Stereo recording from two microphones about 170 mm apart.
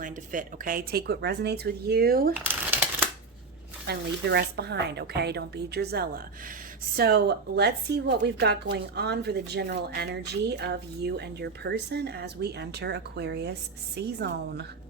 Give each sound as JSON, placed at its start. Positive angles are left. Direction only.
{"t": 0.0, "sound": "speech", "side_deg": -50}
{"t": 2.3, "sound": "crumpling", "side_deg": -10}
{"t": 3.8, "sound": "a woman's voice", "side_deg": -75}